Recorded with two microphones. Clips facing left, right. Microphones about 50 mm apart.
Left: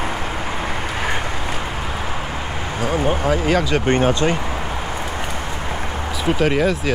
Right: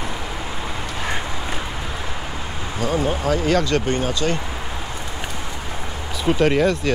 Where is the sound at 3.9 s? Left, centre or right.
Left.